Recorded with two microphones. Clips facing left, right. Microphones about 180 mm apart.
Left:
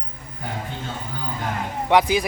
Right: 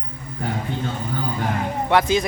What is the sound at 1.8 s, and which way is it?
Speech, 15° left (ahead or behind).